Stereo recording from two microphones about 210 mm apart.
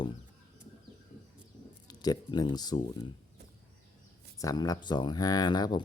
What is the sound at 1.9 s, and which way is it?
Speech, 20° left (ahead or behind).